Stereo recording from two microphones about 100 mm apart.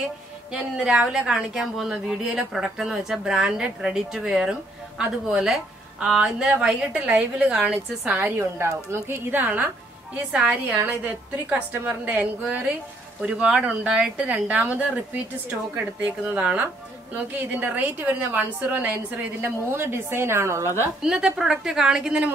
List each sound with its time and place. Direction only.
0.5 s a woman's voice: 10° right (ahead or behind)
8.2 s a woman's voice: 25° right (ahead or behind)
12.0 s a woman's voice: 15° right (ahead or behind)
21.0 s a woman's voice: 5° right (ahead or behind)